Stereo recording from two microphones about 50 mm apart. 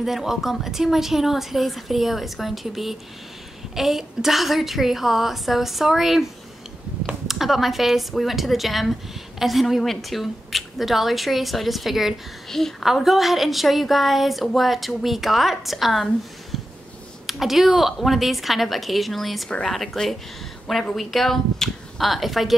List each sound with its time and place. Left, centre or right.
0.0 s a woman's voice: centre
7.2 s a woman's voice: centre
12.8 s a woman's voice: centre
16.5 s a sound: centre
17.3 s a woman's voice: centre